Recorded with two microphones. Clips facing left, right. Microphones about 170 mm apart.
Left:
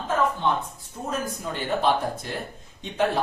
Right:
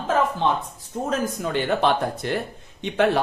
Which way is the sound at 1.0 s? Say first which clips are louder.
Right 4 dB; 85° right.